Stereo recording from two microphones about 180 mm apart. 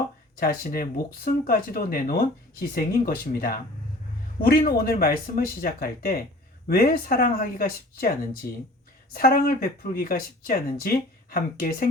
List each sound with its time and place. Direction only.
0.3 s speech: 55° left (ahead or behind)